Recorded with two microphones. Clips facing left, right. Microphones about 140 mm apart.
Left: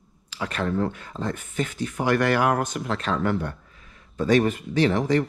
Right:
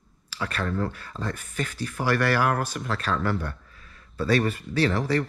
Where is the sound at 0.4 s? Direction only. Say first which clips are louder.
Left 3 dB; 20° left (ahead or behind).